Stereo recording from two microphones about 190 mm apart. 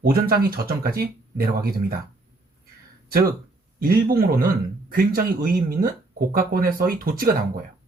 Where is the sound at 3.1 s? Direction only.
50° right (ahead or behind).